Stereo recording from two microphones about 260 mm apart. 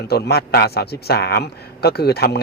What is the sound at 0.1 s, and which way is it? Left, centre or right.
Speech, left.